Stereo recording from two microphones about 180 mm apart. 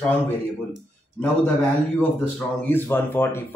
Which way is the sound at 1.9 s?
10° left (ahead or behind).